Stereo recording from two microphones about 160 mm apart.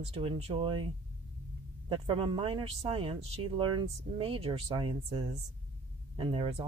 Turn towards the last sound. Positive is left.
turn(degrees=-35)  # may be behind; listen again after turning